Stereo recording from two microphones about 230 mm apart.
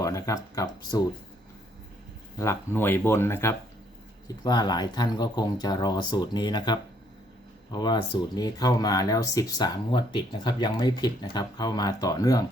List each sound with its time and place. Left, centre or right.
0.0 s speech: centre
2.4 s speech: centre